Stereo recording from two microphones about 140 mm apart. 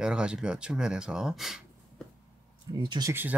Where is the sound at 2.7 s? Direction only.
30° right (ahead or behind).